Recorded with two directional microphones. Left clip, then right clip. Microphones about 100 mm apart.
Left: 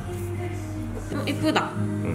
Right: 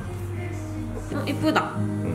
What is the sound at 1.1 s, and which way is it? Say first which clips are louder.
Music: right 1 dB; 10° right (ahead or behind).